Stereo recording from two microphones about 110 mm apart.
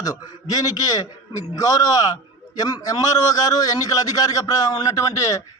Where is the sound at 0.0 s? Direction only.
35° left (ahead or behind).